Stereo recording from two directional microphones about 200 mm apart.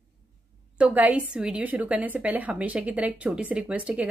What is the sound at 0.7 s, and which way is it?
A woman's voice, 5° right (ahead or behind).